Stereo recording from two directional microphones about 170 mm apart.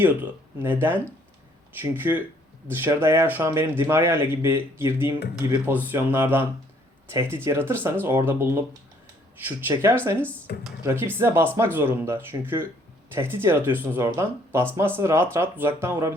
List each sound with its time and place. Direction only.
0.0 s speech: 10° right (ahead or behind)
10.2 s speech: 10° left (ahead or behind)
10.8 s speech: 10° right (ahead or behind)